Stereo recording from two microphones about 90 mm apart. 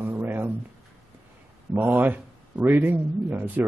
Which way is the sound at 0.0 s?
20° right (ahead or behind).